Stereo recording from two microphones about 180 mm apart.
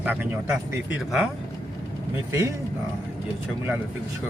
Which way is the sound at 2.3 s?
15° right (ahead or behind).